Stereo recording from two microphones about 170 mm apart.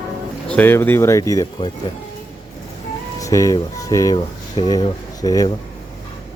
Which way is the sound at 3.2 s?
20° left (ahead or behind).